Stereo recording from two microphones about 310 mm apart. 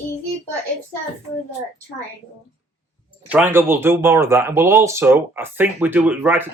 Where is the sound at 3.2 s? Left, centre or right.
Centre.